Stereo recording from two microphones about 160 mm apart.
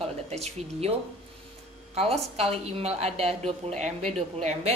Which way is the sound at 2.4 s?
40° right (ahead or behind).